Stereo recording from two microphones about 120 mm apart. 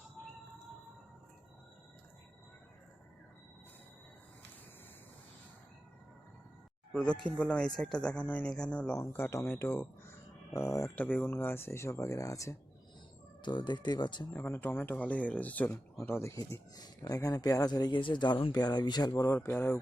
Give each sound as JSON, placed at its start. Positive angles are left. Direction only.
{"t": 6.9, "sound": "speech", "side_deg": 10}
{"t": 9.0, "sound": "speech", "side_deg": 20}
{"t": 13.4, "sound": "speech", "side_deg": 40}
{"t": 14.3, "sound": "speech", "side_deg": 15}